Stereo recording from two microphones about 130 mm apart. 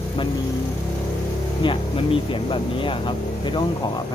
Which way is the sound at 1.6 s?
45° left (ahead or behind).